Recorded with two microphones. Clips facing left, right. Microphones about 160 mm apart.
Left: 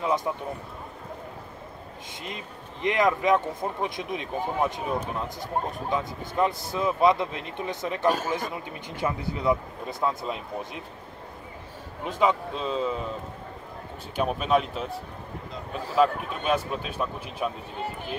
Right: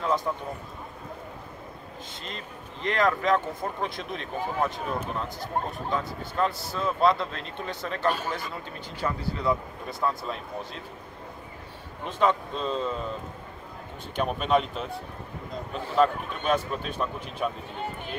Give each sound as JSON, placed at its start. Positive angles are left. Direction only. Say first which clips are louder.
{"t": 2.2, "sound": "speech", "louder": "left 3 dB", "side_deg": 15}
{"t": 12.0, "sound": "a man's voice", "louder": "left 1 dB", "side_deg": 10}
{"t": 14.1, "sound": "a man's voice", "louder": "left 1 dB", "side_deg": 5}